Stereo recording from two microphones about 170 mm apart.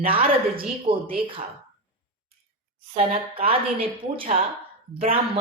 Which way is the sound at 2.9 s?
35° right (ahead or behind).